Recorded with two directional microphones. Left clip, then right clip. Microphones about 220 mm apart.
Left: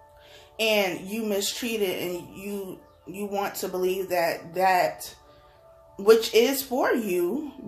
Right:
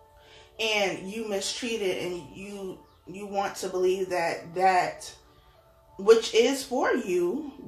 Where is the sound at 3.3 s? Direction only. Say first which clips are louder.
Even; 45° left (ahead or behind).